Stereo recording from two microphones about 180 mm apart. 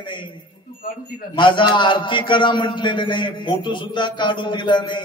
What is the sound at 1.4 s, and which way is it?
A man's voice, 25° left (ahead or behind).